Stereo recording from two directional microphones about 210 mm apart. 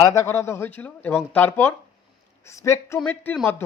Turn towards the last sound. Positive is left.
turn(degrees=10)  # may be behind; listen again after turning